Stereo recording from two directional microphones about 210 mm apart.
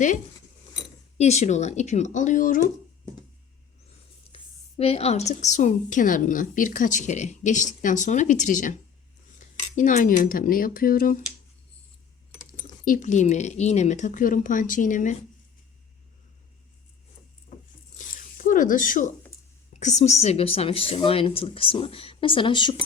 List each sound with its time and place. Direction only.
0.8 s speech: 30° left (ahead or behind)
4.8 s a woman's voice: 30° left (ahead or behind)
9.7 s a woman's voice: 40° left (ahead or behind)
12.4 s a woman's voice: 40° left (ahead or behind)
17.5 s patter: 35° left (ahead or behind)
17.9 s a sound: 40° left (ahead or behind)
19.8 s speech: 35° left (ahead or behind)